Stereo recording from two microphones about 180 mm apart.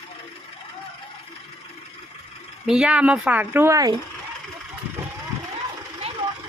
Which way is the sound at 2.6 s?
5° right (ahead or behind).